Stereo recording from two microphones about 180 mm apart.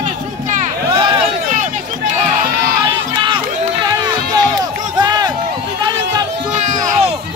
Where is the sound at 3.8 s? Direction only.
20° right (ahead or behind).